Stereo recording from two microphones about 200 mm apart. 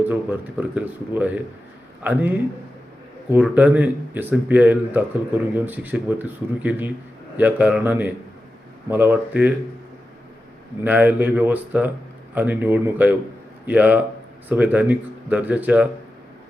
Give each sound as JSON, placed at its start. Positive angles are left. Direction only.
{"t": 0.0, "sound": "speech", "side_deg": -10}
{"t": 10.8, "sound": "speech", "side_deg": -10}